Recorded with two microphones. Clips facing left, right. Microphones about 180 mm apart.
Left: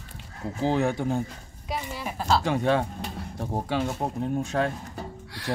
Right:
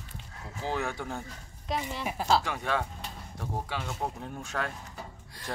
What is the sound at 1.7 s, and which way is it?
Speech, 5° left (ahead or behind).